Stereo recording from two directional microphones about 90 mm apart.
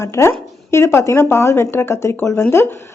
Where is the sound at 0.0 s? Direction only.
30° left (ahead or behind).